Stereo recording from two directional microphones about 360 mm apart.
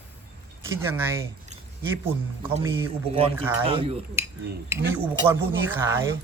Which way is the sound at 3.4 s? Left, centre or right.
Centre.